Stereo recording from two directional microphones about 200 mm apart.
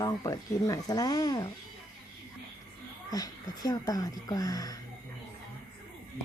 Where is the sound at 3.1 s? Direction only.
20° left (ahead or behind).